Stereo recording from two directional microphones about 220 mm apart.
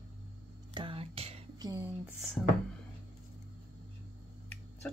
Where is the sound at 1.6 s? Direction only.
10° right (ahead or behind).